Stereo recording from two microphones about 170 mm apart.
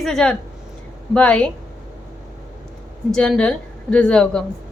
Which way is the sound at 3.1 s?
5° left (ahead or behind).